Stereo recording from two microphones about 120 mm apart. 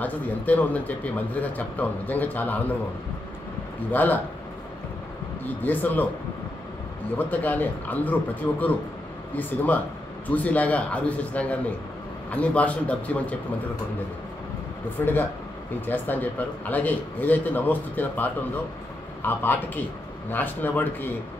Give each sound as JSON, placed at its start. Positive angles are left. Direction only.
{"t": 0.0, "sound": "a man's voice", "side_deg": 15}
{"t": 3.9, "sound": "a man's voice", "side_deg": 15}
{"t": 5.4, "sound": "a man's voice", "side_deg": 15}
{"t": 7.2, "sound": "a man's voice", "side_deg": 15}
{"t": 15.0, "sound": "a man's voice", "side_deg": 15}